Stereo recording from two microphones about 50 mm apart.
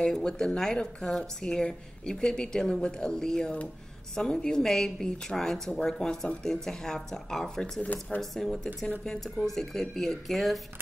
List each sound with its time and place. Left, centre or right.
0.0 s a woman's voice: centre
7.8 s speech: left
8.2 s a woman's voice: centre
8.8 s a woman's voice: centre